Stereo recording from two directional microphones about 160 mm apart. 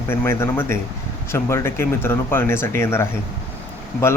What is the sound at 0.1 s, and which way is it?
Speech, 15° left (ahead or behind).